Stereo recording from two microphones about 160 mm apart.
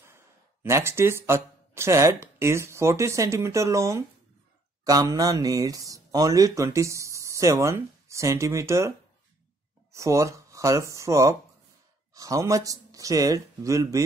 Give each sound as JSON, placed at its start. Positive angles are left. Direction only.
{"t": 0.0, "sound": "speech", "side_deg": -15}
{"t": 9.9, "sound": "speech", "side_deg": -20}